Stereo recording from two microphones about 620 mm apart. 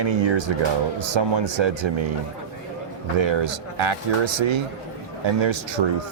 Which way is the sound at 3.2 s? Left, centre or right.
Right.